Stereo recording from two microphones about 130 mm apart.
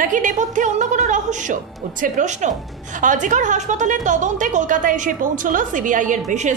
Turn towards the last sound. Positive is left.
turn(degrees=-85)